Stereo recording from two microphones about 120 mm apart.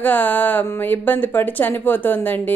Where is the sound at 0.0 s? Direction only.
15° left (ahead or behind).